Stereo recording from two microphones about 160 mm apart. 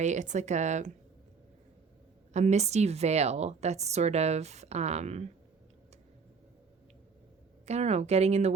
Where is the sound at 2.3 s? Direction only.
45° right (ahead or behind).